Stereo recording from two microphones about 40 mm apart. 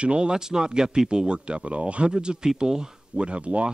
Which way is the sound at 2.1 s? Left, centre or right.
Centre.